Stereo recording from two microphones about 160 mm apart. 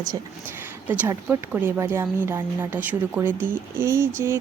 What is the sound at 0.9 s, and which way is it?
Speech, 10° right (ahead or behind).